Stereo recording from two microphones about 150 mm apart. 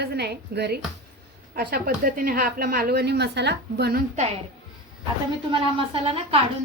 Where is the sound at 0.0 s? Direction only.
90° right.